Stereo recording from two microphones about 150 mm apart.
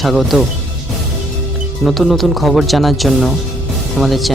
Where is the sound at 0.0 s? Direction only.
Centre (ahead or behind).